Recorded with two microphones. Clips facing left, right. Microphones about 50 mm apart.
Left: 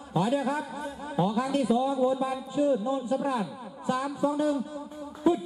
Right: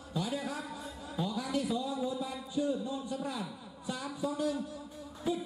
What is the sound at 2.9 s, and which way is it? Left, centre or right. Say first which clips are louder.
A man's voice: left 9 dB; left.